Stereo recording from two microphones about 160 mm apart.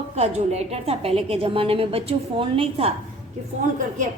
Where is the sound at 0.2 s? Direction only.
45° right (ahead or behind).